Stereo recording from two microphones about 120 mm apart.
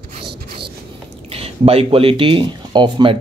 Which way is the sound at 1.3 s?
55° right (ahead or behind).